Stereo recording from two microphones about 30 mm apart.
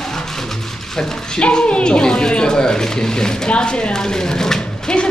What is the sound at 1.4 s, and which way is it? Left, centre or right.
Speech, left.